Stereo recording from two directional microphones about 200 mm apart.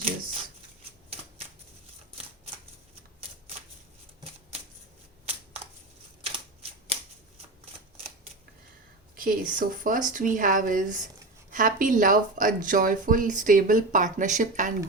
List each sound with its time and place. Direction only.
6.2 s camera: 30° right (ahead or behind)
9.1 s speech: 45° right (ahead or behind)